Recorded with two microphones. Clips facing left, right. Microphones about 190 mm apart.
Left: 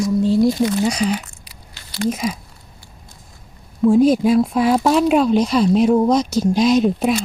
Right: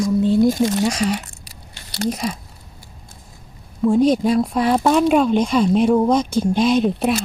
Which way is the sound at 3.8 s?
Centre (ahead or behind).